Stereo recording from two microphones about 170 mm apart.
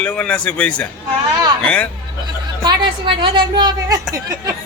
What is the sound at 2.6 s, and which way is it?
A woman's voice, 30° right (ahead or behind).